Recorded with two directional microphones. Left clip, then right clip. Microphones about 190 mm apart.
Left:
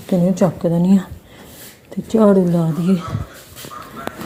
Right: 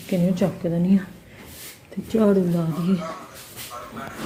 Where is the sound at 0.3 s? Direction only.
25° left (ahead or behind).